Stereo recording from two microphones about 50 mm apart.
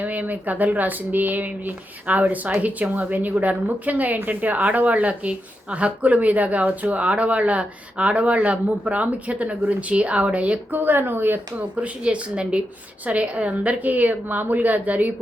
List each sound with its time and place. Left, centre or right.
0.0 s a woman's voice: right
10.7 s speech: right
11.8 s a woman's voice: right